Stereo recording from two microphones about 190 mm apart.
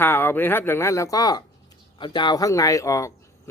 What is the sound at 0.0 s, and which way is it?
Speech, 10° left (ahead or behind).